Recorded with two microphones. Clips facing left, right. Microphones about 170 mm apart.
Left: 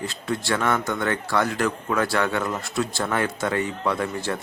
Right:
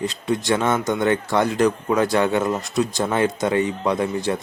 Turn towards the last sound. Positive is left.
turn(degrees=-20)  # may be behind; listen again after turning